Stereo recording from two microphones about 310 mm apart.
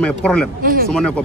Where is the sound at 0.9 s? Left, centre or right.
Centre.